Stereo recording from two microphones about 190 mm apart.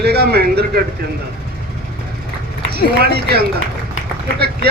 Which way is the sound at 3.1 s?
55° right (ahead or behind).